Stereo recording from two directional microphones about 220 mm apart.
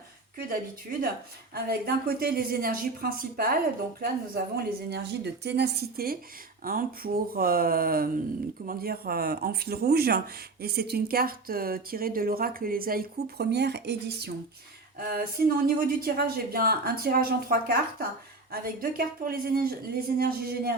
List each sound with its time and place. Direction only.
0.3 s speech: 40° right (ahead or behind)